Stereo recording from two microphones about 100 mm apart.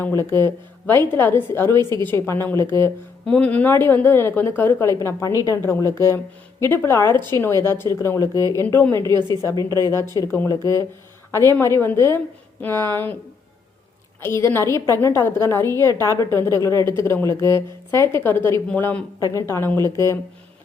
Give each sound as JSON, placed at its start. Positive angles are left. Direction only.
{"t": 0.0, "sound": "a woman's voice", "side_deg": 25}
{"t": 3.2, "sound": "a woman's voice", "side_deg": 10}
{"t": 8.6, "sound": "a woman's voice", "side_deg": 20}
{"t": 10.5, "sound": "speech", "side_deg": 35}
{"t": 11.6, "sound": "a woman's voice", "side_deg": 25}
{"t": 14.2, "sound": "a woman's voice", "side_deg": 25}
{"t": 19.2, "sound": "a woman's voice", "side_deg": 30}